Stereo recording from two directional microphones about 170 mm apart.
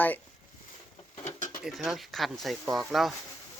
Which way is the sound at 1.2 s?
45° left (ahead or behind).